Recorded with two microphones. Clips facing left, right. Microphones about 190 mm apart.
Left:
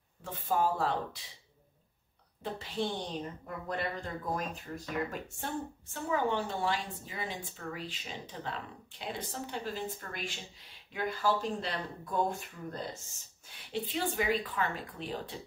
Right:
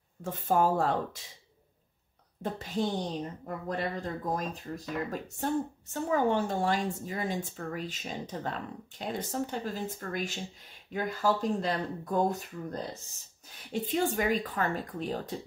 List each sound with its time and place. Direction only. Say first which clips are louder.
0.2 s a woman's voice: right 4 dB; 45° right (ahead or behind)
2.4 s a woman's voice: right 4 dB; 45° right (ahead or behind)
5.1 s a woman's voice: right 7 dB; 40° right (ahead or behind)